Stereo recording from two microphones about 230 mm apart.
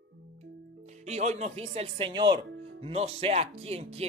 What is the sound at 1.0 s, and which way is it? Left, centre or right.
Speech, right.